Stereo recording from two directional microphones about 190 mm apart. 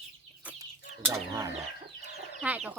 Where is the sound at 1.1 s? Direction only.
15° right (ahead or behind).